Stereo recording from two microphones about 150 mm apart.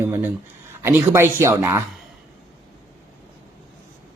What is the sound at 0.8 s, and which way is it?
Speech, 15° right (ahead or behind).